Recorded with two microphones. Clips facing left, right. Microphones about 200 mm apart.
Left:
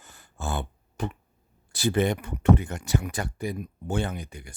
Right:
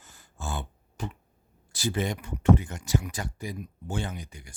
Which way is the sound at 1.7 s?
60° left (ahead or behind).